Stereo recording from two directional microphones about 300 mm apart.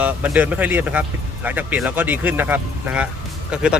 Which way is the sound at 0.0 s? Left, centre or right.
Centre.